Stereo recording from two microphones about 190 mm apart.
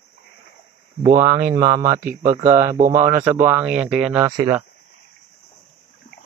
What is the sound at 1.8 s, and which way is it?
Speech, 45° right (ahead or behind).